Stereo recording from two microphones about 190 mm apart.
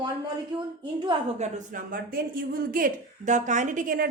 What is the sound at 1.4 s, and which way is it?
A woman's voice, 40° right (ahead or behind).